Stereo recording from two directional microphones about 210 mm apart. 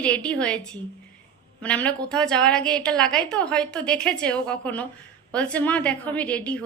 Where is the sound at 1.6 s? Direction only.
5° left (ahead or behind).